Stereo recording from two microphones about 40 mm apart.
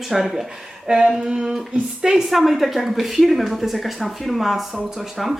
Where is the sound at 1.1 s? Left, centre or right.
Centre.